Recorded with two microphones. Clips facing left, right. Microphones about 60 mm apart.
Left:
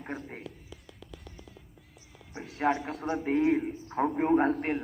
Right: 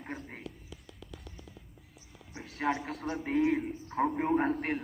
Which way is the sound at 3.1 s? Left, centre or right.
Left.